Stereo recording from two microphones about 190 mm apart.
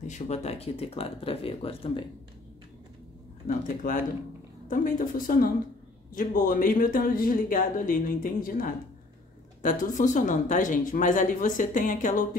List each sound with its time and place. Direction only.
0.0 s speech: 35° left (ahead or behind)
3.4 s speech: 40° left (ahead or behind)